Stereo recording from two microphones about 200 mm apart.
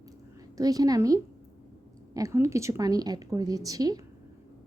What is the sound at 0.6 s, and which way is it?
A woman's voice, 20° right (ahead or behind).